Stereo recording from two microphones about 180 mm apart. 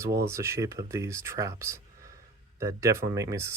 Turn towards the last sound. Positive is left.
turn(degrees=-15)  # may be behind; listen again after turning